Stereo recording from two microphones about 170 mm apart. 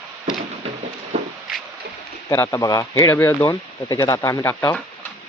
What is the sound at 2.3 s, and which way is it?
Speech, 15° left (ahead or behind).